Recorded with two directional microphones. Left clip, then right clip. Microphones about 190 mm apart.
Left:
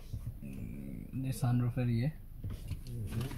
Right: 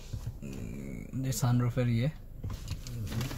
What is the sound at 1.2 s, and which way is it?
Speech, 15° right (ahead or behind).